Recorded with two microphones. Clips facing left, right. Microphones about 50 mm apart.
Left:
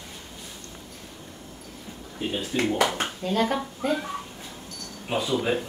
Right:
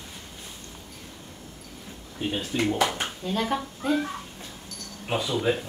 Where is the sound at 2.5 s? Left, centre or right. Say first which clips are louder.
Left 1 dB; centre.